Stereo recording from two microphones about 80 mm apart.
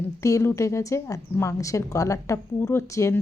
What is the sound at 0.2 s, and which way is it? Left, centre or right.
Speech, left.